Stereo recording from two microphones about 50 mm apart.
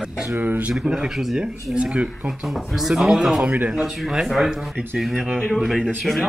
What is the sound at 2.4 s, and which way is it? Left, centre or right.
Speech, centre.